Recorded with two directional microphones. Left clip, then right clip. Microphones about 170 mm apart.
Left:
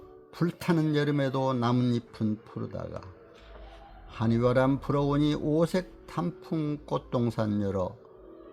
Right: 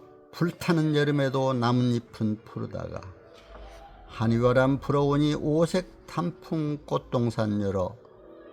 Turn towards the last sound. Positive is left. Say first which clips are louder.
# right 2 dB
turn(degrees=-15)  # may be behind; listen again after turning